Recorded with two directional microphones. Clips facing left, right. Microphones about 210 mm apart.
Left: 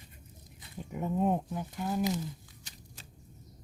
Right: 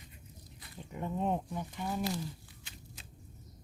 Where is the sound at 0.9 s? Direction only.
10° left (ahead or behind).